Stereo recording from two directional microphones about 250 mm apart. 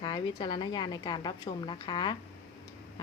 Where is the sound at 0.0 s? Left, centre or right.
Centre.